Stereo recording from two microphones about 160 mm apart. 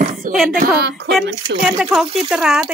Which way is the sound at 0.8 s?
90° right.